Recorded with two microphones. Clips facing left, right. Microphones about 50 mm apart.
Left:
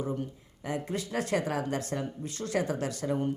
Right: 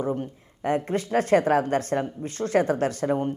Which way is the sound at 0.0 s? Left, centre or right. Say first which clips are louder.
Right 6 dB; right.